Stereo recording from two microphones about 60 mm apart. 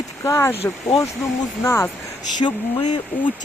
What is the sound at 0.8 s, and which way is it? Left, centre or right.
Speech, left.